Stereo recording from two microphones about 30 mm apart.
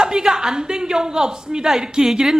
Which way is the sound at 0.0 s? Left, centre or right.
Right.